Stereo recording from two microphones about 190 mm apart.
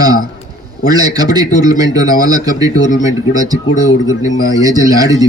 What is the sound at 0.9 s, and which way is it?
A man's voice, 20° right (ahead or behind).